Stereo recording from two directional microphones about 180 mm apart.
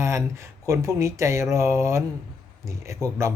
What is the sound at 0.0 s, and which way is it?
A man's voice, 15° right (ahead or behind).